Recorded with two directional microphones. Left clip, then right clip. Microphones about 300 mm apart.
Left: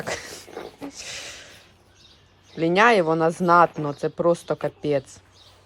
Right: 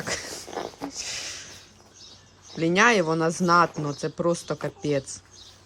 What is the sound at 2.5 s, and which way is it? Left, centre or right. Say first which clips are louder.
Speech: left 3 dB; centre.